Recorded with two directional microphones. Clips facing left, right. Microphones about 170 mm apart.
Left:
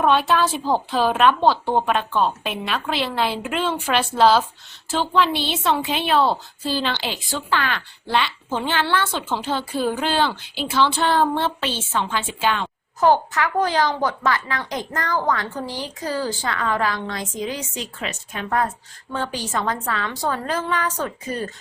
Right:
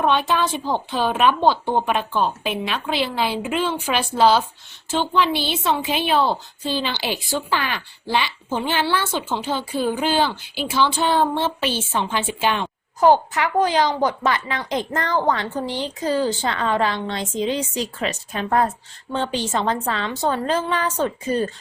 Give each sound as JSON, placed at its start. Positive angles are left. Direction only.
{"t": 0.0, "sound": "a woman's voice", "side_deg": 0}
{"t": 11.6, "sound": "a woman's voice", "side_deg": -15}